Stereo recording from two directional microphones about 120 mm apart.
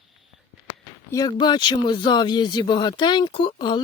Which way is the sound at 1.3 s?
35° left (ahead or behind).